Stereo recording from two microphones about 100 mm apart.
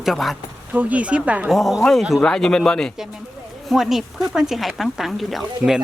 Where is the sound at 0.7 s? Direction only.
15° right (ahead or behind).